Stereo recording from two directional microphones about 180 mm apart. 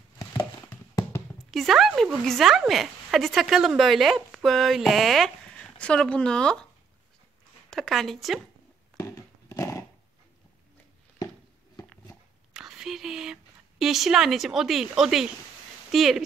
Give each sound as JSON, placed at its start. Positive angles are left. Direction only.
{"t": 0.3, "sound": "a sound", "side_deg": 20}
{"t": 1.5, "sound": "a woman's voice", "side_deg": 0}
{"t": 7.7, "sound": "a woman's voice", "side_deg": 0}
{"t": 8.9, "sound": "horse", "side_deg": 20}
{"t": 12.5, "sound": "whispering", "side_deg": -5}
{"t": 15.9, "sound": "a woman's voice", "side_deg": 0}